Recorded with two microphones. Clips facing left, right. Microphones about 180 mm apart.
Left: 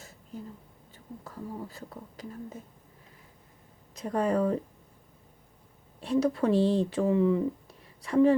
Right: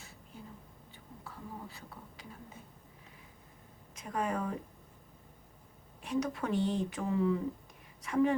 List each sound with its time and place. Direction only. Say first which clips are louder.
0.9 s a sound: left 8 dB; 40° left (ahead or behind)
3.9 s a woman's voice: left 8 dB; 35° left (ahead or behind)
6.0 s a woman's voice: left 8 dB; 35° left (ahead or behind)